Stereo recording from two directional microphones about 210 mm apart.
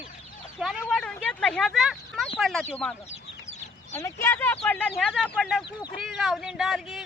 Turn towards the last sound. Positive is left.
turn(degrees=0)  # may be behind; listen again after turning